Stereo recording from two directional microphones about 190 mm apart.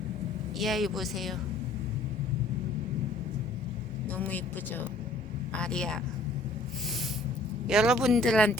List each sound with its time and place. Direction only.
0.6 s speech: centre (ahead or behind)
4.2 s speech: 10° left (ahead or behind)
7.7 s speech: 5° right (ahead or behind)